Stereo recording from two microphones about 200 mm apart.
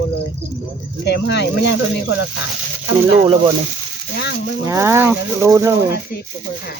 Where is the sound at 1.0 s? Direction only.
60° left (ahead or behind).